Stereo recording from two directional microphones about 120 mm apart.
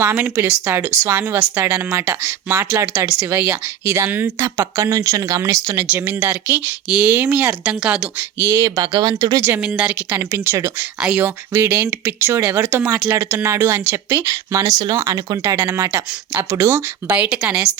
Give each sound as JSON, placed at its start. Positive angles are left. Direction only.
{"t": 0.0, "sound": "speech", "side_deg": -20}
{"t": 5.9, "sound": "speech", "side_deg": -15}
{"t": 8.4, "sound": "speech", "side_deg": -20}
{"t": 9.6, "sound": "speech", "side_deg": -10}
{"t": 15.5, "sound": "speech", "side_deg": -15}
{"t": 15.8, "sound": "speech", "side_deg": -35}
{"t": 16.3, "sound": "speech", "side_deg": -15}
{"t": 17.2, "sound": "speech", "side_deg": -10}